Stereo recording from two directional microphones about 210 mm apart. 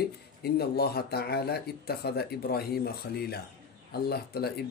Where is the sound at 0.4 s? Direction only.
50° left (ahead or behind).